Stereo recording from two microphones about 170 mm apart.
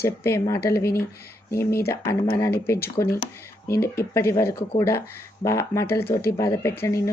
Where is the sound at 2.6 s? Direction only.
15° left (ahead or behind).